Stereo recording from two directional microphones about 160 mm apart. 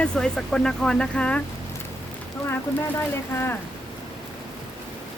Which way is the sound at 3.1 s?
15° left (ahead or behind).